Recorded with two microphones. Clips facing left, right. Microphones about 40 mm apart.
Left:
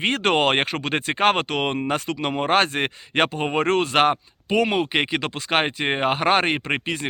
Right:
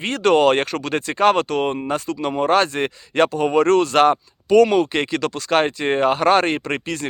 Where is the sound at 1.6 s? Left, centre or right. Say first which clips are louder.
Right 2 dB; left.